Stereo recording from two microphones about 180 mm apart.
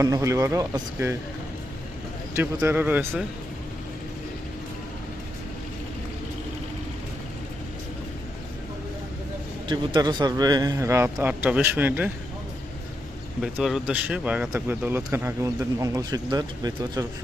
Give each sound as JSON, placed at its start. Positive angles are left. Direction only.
{"t": 0.0, "sound": "speech", "side_deg": -15}
{"t": 2.3, "sound": "speech", "side_deg": -10}
{"t": 9.6, "sound": "speech", "side_deg": -25}
{"t": 13.4, "sound": "speech", "side_deg": 0}